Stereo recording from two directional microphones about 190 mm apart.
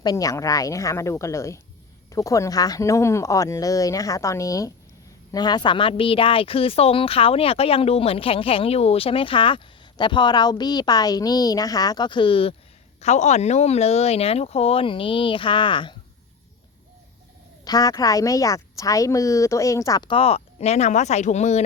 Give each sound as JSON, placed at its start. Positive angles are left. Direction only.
{"t": 0.0, "sound": "speech", "side_deg": 20}
{"t": 17.7, "sound": "speech", "side_deg": 20}